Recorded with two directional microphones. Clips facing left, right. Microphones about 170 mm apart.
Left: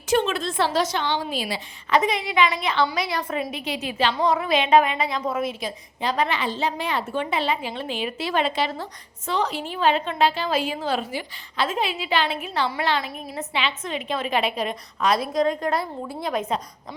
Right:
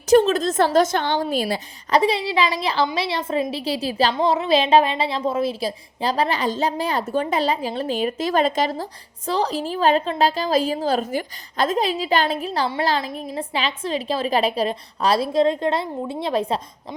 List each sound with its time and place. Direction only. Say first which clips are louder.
0.1 s a woman's voice: right 7 dB; 40° right (ahead or behind)
2.0 s a woman's voice: right 2 dB; 30° right (ahead or behind)